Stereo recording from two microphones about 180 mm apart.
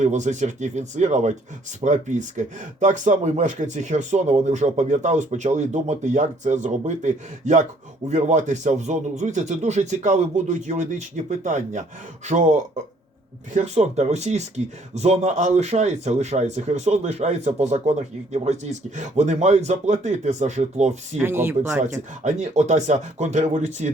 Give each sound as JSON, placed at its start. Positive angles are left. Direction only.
{"t": 0.0, "sound": "speech", "side_deg": -40}
{"t": 21.2, "sound": "speech", "side_deg": -10}
{"t": 22.2, "sound": "speech", "side_deg": -40}